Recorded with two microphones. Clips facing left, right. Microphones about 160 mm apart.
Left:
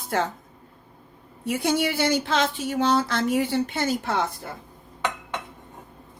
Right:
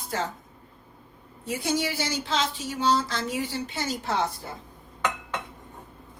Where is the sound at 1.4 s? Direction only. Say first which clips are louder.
Left 4 dB; 60° left (ahead or behind).